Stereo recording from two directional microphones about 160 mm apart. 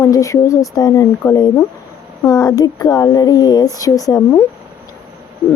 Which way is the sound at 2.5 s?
25° left (ahead or behind).